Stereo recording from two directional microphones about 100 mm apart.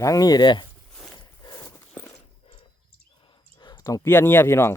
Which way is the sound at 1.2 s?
40° left (ahead or behind).